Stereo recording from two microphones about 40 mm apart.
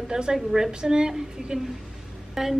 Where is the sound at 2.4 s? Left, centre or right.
Centre.